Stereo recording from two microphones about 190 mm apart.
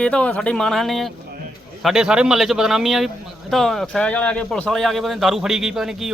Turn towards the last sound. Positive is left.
turn(degrees=0)  # may be behind; listen again after turning